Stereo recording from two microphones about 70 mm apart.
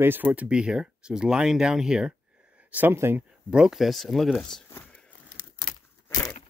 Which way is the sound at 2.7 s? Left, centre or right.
Right.